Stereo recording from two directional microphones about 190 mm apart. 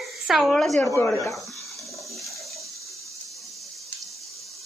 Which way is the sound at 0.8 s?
15° left (ahead or behind).